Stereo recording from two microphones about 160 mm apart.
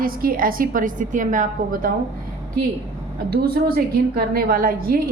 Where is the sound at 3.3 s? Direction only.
70° right (ahead or behind).